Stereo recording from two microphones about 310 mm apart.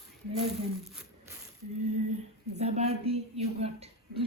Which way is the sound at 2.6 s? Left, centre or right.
Right.